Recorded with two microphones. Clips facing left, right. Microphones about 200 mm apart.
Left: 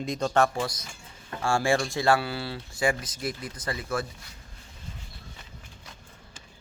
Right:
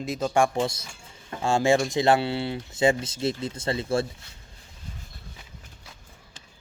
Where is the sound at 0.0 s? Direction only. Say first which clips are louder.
Right 1 dB; 5° right (ahead or behind).